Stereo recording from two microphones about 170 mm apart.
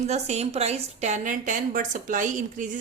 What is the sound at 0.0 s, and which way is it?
A woman's voice, 40° right (ahead or behind).